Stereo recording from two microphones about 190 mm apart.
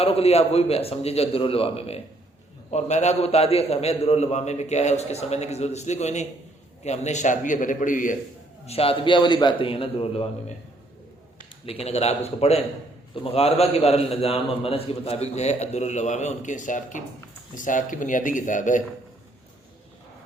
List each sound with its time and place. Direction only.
0.0 s a man's voice: 30° left (ahead or behind)
8.6 s a man's voice: 30° left (ahead or behind)
11.6 s a man's voice: 30° left (ahead or behind)